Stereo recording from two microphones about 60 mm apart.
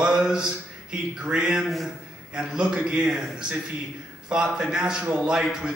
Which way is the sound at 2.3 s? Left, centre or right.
Centre.